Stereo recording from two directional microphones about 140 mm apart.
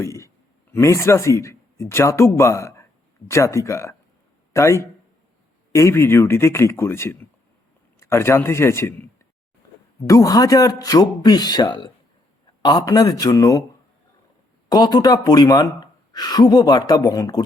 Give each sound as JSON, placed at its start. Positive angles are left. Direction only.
{"t": 0.0, "sound": "a sound", "side_deg": 20}
{"t": 0.7, "sound": "speech", "side_deg": 20}
{"t": 14.7, "sound": "speech", "side_deg": 30}